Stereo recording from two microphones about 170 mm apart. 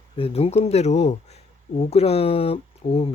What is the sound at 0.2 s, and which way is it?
Speech, 35° left (ahead or behind).